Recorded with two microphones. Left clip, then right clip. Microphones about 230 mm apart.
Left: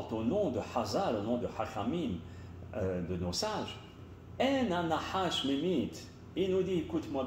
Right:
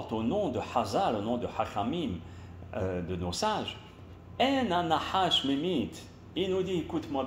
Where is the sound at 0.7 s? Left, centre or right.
Right.